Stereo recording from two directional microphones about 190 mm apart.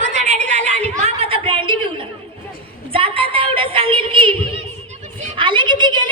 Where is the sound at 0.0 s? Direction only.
35° right (ahead or behind).